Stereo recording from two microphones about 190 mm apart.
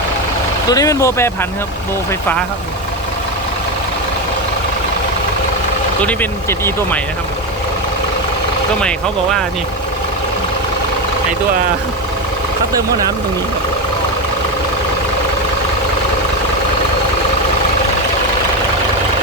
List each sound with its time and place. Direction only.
0.7 s speech: 20° left (ahead or behind)
6.0 s speech: 10° left (ahead or behind)